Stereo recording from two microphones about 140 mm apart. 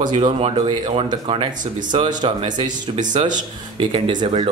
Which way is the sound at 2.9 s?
55° right (ahead or behind).